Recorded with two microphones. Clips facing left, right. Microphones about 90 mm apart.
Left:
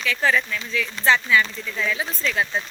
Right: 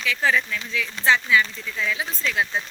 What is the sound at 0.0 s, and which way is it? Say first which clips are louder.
Speech: left 1 dB; 5° right (ahead or behind).